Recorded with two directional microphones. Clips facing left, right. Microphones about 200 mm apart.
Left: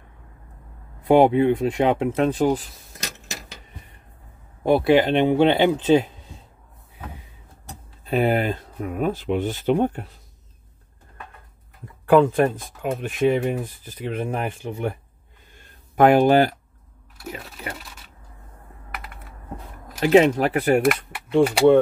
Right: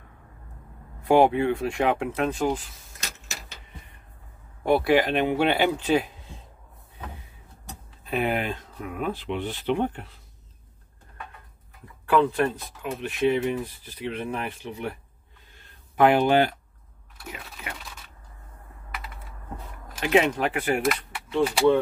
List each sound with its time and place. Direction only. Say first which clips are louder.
1.0 s speech: left 4 dB; 20° left (ahead or behind); by 2.8 s 35° left (ahead or behind)
4.6 s speech: left 4 dB; 20° left (ahead or behind)
8.0 s speech: left 5 dB; 35° left (ahead or behind)
12.1 s speech: left 6 dB; 50° left (ahead or behind)
16.0 s speech: left 4 dB; 45° left (ahead or behind)
20.1 s speech: left 6 dB; 35° left (ahead or behind)
20.8 s speech: left 5 dB; 60° left (ahead or behind)